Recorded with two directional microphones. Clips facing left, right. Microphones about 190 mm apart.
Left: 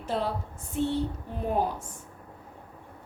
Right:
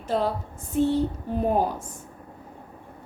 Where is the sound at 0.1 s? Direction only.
40° right (ahead or behind).